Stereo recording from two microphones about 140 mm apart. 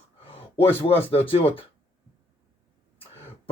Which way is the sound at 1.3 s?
40° left (ahead or behind).